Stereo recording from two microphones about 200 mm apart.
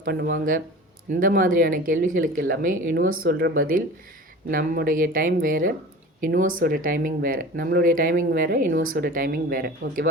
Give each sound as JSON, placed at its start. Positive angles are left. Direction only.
{"t": 0.0, "sound": "speech", "side_deg": -50}